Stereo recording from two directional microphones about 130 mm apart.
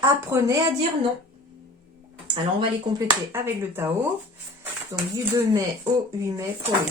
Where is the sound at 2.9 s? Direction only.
20° right (ahead or behind).